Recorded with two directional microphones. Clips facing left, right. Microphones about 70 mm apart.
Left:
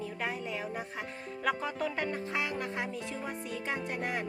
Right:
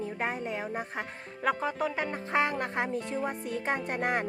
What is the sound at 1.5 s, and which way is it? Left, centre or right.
Music, centre.